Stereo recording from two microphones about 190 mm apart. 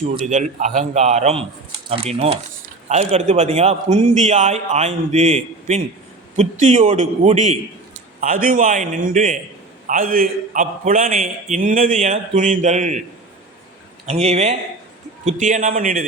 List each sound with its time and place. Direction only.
0.0 s a man's voice: 40° right (ahead or behind)
14.1 s a man's voice: 35° right (ahead or behind)